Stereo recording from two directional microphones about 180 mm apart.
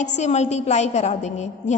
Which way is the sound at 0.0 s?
40° left (ahead or behind).